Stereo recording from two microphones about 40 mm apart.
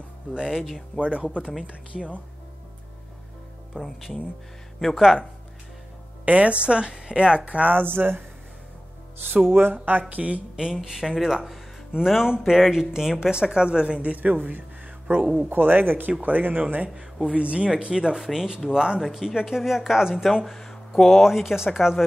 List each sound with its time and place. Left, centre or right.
0.3 s speech: centre
0.9 s a woman's voice: right
3.7 s speech: centre
6.2 s a woman's voice: right
7.4 s speech: right
7.7 s speech: right
9.5 s speech: right
10.5 s a woman's voice: centre
14.1 s speech: right
16.2 s speech: right
16.9 s a woman's voice: centre
18.9 s speech: centre
20.4 s speech: centre